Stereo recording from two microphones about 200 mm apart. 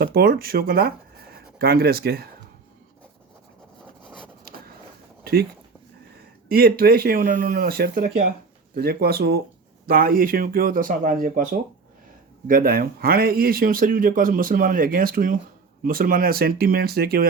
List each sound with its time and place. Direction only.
0.0 s speech: 50° right (ahead or behind)
4.0 s rub: 5° left (ahead or behind)
5.2 s a sound: 50° right (ahead or behind)
6.5 s speech: 50° right (ahead or behind)